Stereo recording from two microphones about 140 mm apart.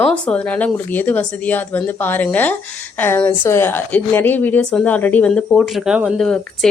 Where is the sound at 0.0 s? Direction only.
10° left (ahead or behind).